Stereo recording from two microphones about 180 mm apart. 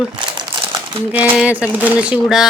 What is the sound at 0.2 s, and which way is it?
Crumpling, 25° right (ahead or behind).